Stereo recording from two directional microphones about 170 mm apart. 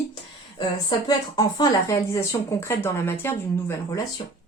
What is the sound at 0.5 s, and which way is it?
Speech, 25° left (ahead or behind).